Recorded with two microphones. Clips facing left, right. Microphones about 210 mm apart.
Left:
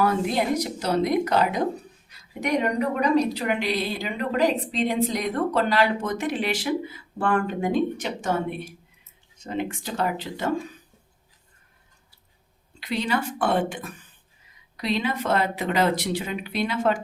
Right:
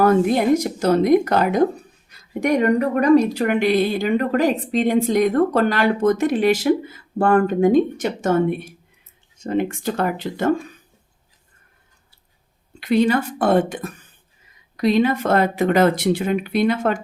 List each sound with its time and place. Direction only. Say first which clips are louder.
0.0 s a woman's voice: right 7 dB; 50° right (ahead or behind)
12.8 s a woman's voice: right 9 dB; 50° right (ahead or behind)